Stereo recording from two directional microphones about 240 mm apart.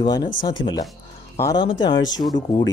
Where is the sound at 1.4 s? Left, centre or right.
Centre.